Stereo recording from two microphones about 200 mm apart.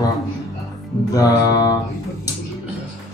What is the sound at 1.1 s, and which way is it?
Speech, 20° left (ahead or behind).